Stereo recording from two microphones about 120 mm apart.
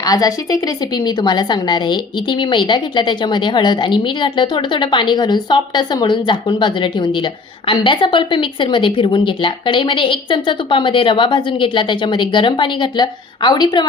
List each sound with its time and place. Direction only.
0.0 s a woman's voice: 30° left (ahead or behind)